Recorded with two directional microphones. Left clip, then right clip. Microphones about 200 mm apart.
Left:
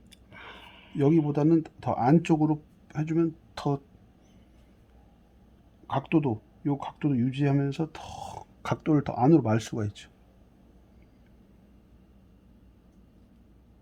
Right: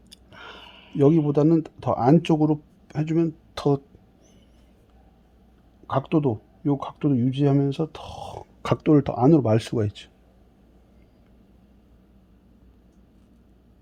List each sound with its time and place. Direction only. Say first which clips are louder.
0.1 s a sound: right 4 dB; 5° left (ahead or behind)
0.9 s speech: right 5 dB; 40° right (ahead or behind)
6.0 s speech: right 4 dB; 35° right (ahead or behind)